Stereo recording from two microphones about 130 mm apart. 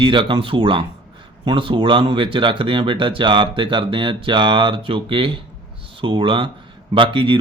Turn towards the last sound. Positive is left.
turn(degrees=-40)  # may be behind; listen again after turning